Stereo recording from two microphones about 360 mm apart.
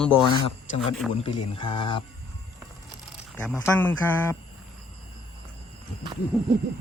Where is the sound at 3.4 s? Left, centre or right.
Centre.